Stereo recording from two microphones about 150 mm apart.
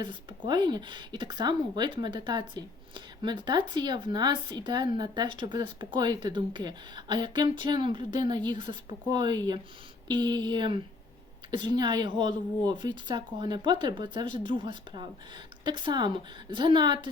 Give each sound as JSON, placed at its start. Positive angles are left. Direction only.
{"t": 0.0, "sound": "speech", "side_deg": -30}